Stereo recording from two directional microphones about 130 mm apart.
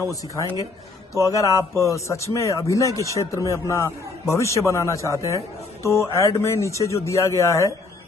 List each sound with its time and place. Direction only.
1.1 s speech: 25° left (ahead or behind)